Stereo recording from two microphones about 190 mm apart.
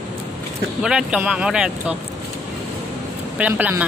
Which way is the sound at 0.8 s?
5° right (ahead or behind).